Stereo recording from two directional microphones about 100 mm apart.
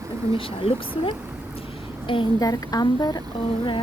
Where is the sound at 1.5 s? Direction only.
70° left (ahead or behind).